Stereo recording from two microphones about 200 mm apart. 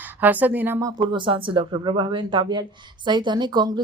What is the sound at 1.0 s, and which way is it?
Speech, 25° right (ahead or behind).